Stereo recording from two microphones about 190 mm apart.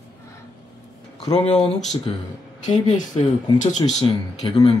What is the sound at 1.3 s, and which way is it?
Speech, 35° left (ahead or behind).